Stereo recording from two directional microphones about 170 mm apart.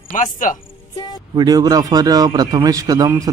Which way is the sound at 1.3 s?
25° right (ahead or behind).